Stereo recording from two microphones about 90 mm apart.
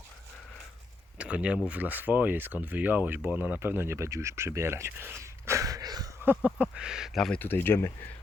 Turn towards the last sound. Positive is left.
turn(degrees=25)  # may be behind; listen again after turning